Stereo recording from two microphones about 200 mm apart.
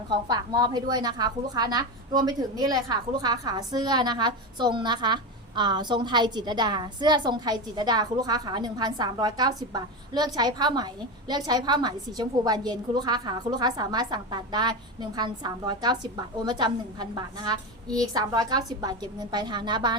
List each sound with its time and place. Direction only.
0.1 s a woman's voice: 20° right (ahead or behind)